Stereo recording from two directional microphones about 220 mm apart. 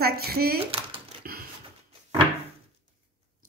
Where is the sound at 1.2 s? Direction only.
40° right (ahead or behind).